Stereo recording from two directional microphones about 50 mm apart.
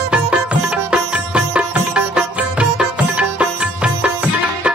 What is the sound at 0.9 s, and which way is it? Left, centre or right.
Music, centre.